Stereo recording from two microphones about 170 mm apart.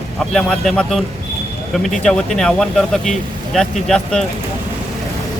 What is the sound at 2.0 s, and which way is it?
A man's voice, 5° left (ahead or behind).